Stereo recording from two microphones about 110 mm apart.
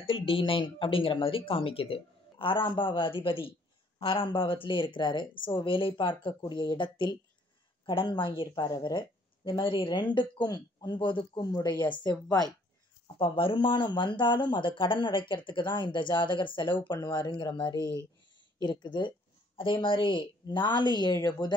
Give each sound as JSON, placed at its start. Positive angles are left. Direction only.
{"t": 0.0, "sound": "speech", "side_deg": 55}
{"t": 11.4, "sound": "speech", "side_deg": 35}
{"t": 13.0, "sound": "speech", "side_deg": 55}
{"t": 18.6, "sound": "speech", "side_deg": 45}